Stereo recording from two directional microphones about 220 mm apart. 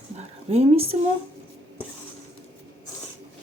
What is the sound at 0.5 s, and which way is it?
Speech, 25° right (ahead or behind).